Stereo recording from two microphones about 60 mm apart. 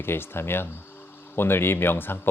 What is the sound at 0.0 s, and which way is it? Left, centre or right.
Speech, left.